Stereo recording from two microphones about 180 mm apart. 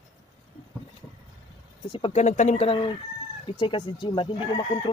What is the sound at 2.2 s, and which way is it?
Speech, 40° left (ahead or behind).